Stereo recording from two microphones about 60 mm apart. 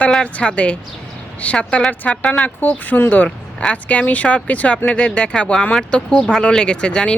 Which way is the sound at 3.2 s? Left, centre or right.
Centre.